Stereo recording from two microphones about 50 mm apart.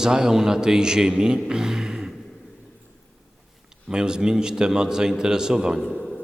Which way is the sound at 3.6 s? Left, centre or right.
Centre.